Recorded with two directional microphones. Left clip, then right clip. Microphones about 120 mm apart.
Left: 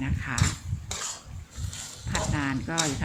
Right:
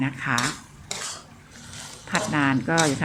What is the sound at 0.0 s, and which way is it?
Speech, 10° right (ahead or behind).